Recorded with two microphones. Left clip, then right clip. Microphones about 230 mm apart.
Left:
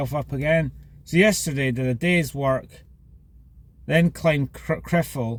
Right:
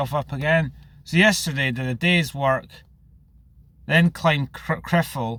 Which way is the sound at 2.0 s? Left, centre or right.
Centre.